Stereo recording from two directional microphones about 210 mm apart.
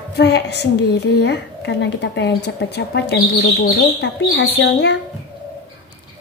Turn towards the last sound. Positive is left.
turn(degrees=55)  # may be behind; listen again after turning